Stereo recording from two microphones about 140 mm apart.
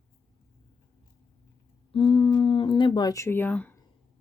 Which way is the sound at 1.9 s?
40° left (ahead or behind).